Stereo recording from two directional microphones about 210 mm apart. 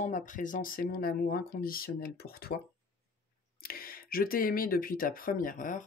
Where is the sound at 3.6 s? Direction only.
45° left (ahead or behind).